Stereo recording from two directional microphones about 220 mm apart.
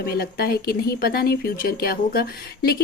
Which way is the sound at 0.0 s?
45° left (ahead or behind).